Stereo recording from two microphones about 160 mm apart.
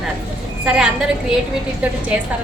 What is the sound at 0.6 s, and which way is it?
Speech, 5° right (ahead or behind).